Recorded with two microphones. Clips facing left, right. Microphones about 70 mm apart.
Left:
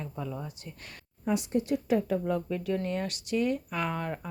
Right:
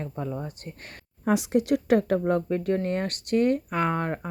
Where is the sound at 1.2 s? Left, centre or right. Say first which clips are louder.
Right 5 dB; right.